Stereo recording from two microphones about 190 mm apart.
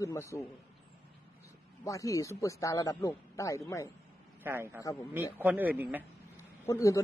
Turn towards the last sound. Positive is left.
turn(degrees=15)  # may be behind; listen again after turning